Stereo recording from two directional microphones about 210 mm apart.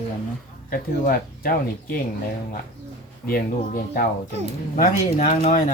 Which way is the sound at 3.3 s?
45° left (ahead or behind).